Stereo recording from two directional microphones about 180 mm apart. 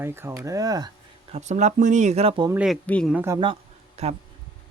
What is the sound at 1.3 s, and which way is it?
Speech, 40° right (ahead or behind).